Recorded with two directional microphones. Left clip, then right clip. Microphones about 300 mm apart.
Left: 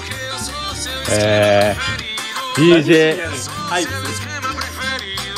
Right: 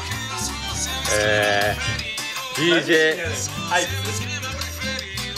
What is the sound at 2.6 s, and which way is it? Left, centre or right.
Speech, centre.